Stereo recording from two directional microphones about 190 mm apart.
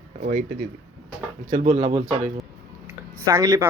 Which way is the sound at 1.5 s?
40° right (ahead or behind).